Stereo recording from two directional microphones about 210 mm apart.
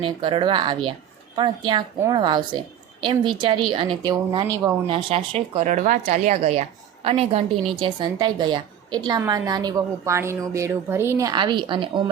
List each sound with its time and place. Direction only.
0.0 s speech: 25° right (ahead or behind)